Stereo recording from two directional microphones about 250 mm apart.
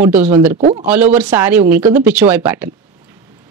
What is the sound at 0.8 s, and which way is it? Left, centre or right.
Speech, centre.